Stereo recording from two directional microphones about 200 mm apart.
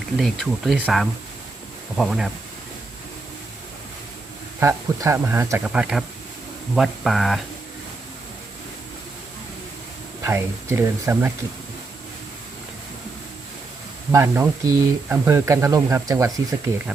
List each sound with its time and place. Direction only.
0.2 s speech: centre (ahead or behind)
4.6 s speech: 15° right (ahead or behind)
10.2 s speech: 15° right (ahead or behind)
14.1 s speech: 15° right (ahead or behind)